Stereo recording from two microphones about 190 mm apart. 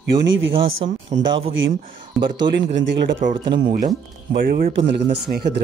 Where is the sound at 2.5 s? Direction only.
70° right (ahead or behind).